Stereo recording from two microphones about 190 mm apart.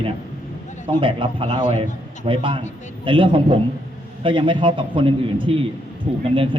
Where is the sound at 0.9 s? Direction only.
25° right (ahead or behind).